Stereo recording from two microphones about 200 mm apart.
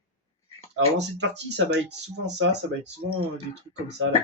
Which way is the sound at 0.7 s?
60° right (ahead or behind).